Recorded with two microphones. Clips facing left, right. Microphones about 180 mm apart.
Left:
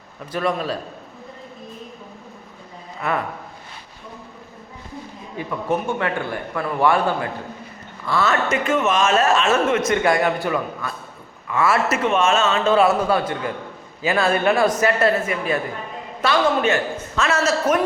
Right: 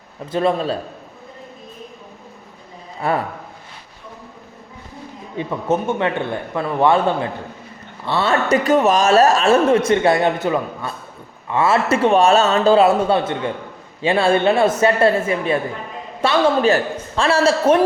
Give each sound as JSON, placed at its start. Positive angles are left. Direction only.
{"t": 0.3, "sound": "a man's voice", "side_deg": -25}
{"t": 3.0, "sound": "a man's voice", "side_deg": -30}
{"t": 5.4, "sound": "a man's voice", "side_deg": -25}